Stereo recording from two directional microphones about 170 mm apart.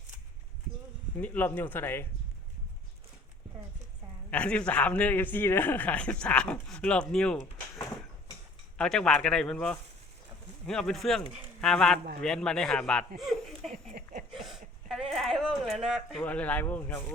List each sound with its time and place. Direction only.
1.2 s a man's voice: 10° left (ahead or behind)
4.3 s a man's voice: 5° left (ahead or behind)
8.8 s speech: 5° left (ahead or behind)
13.9 s a sound: 55° right (ahead or behind)
14.3 s speech: centre (ahead or behind)